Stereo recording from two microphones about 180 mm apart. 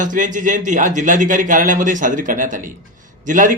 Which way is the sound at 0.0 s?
45° right (ahead or behind).